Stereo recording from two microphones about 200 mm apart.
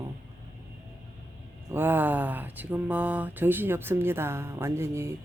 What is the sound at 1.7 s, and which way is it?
Speech, 10° right (ahead or behind).